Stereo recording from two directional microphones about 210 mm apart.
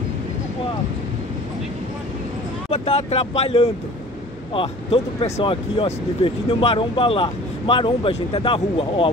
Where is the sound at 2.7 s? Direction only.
30° left (ahead or behind).